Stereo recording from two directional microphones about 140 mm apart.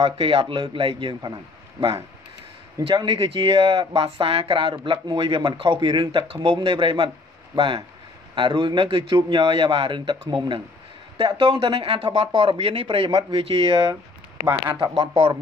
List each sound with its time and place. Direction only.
0.0 s speech: 40° right (ahead or behind)
11.1 s speech: 40° right (ahead or behind)
14.8 s speech: 35° right (ahead or behind)